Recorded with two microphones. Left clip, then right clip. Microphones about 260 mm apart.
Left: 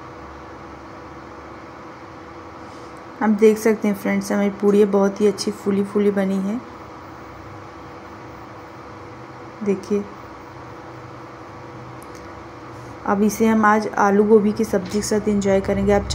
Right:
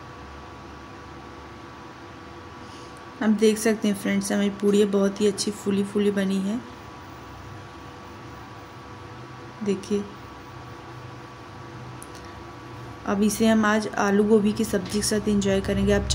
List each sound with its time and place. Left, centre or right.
3.2 s speech: centre
9.7 s speech: centre
13.0 s speech: centre